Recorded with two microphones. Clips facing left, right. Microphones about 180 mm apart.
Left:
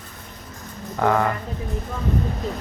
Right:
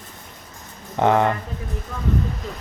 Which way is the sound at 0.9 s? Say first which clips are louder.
Right 3 dB; 20° right (ahead or behind).